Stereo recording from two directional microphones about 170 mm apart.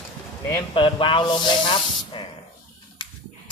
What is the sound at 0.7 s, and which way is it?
Speech, 30° left (ahead or behind).